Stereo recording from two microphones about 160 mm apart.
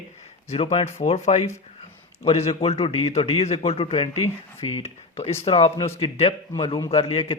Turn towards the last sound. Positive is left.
turn(degrees=40)  # may be behind; listen again after turning